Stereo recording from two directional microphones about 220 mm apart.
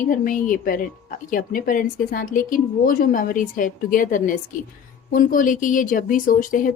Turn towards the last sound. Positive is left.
turn(degrees=40)  # may be behind; listen again after turning